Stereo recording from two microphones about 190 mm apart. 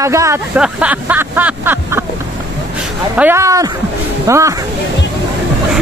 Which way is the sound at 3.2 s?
15° right (ahead or behind).